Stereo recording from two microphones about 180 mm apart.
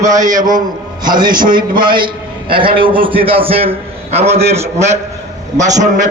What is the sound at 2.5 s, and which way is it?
A man's voice, 30° right (ahead or behind).